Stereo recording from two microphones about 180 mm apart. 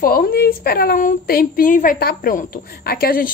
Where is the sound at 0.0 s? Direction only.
55° left (ahead or behind).